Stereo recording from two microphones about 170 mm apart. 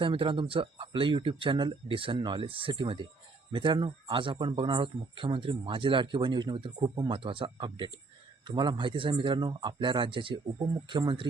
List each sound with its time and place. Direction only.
0.0 s speech: 30° right (ahead or behind)